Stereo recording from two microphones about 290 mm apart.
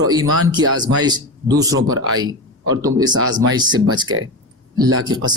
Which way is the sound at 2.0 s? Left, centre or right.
Right.